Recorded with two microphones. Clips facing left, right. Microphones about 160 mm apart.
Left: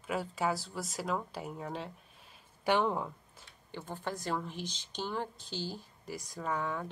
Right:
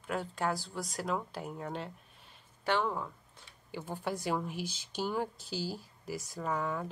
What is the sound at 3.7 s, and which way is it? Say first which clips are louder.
Speech: right 2 dB; 10° right (ahead or behind).